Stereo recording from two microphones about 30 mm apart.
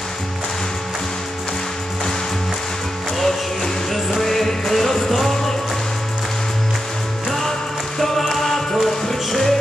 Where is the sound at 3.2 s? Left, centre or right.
Centre.